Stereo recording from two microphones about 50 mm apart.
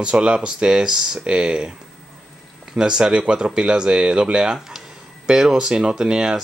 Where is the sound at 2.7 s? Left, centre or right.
Centre.